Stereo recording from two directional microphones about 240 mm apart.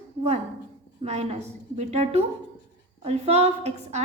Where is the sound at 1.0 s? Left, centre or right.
Right.